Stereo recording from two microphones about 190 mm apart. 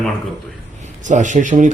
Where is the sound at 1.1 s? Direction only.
40° right (ahead or behind).